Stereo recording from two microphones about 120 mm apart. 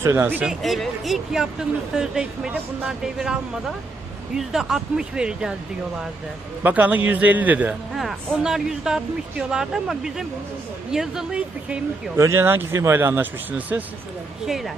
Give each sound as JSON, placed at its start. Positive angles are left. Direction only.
{"t": 0.0, "sound": "speech", "side_deg": -20}
{"t": 0.4, "sound": "speech", "side_deg": 0}
{"t": 6.6, "sound": "a man's voice", "side_deg": -15}
{"t": 7.9, "sound": "speech", "side_deg": 0}
{"t": 12.1, "sound": "speech", "side_deg": -25}
{"t": 14.4, "sound": "speech", "side_deg": 0}